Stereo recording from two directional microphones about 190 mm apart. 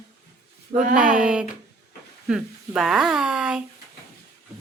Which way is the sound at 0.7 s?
45° right (ahead or behind).